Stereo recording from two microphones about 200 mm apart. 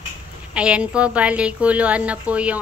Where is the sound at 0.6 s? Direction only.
5° right (ahead or behind).